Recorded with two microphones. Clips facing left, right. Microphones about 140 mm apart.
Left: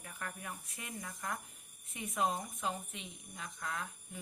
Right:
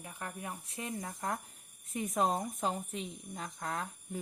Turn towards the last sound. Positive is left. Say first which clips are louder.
# right 4 dB
turn(degrees=-40)  # may be behind; listen again after turning